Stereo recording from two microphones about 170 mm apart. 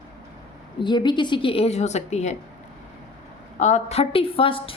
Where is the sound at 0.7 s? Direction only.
25° left (ahead or behind).